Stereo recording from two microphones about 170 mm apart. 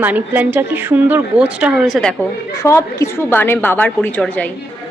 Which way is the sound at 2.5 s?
20° left (ahead or behind).